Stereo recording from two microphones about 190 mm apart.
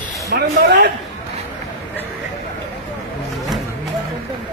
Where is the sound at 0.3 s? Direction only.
60° right (ahead or behind).